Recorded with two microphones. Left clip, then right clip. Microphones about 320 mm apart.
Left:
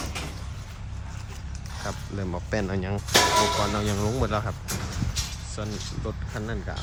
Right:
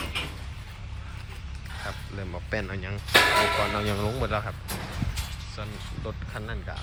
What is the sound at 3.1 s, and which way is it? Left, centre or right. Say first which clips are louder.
Speech: even; centre.